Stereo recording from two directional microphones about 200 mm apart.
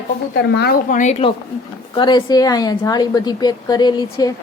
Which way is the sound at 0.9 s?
35° left (ahead or behind).